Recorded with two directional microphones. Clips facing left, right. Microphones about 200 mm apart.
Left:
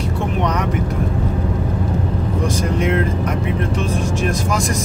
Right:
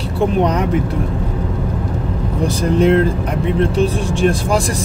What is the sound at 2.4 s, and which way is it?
Speech, 35° right (ahead or behind).